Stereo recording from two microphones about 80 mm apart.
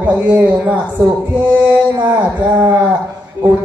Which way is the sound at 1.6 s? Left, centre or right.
Right.